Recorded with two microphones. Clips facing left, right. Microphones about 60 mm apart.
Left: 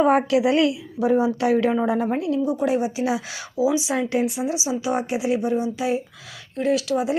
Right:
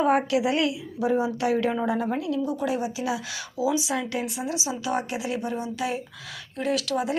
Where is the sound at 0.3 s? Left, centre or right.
Left.